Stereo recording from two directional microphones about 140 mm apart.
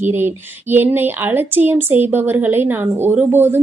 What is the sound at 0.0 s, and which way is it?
A woman's voice, 15° right (ahead or behind).